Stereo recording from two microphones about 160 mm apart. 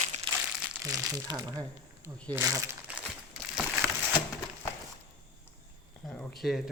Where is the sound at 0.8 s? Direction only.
20° right (ahead or behind).